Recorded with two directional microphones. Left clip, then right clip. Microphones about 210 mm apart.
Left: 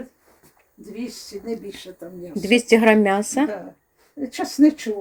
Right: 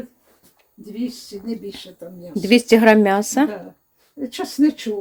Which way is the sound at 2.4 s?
15° right (ahead or behind).